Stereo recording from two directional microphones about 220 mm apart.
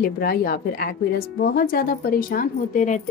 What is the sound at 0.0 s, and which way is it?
Speech, 40° left (ahead or behind).